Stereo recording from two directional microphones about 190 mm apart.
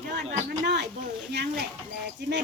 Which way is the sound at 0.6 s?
65° right (ahead or behind).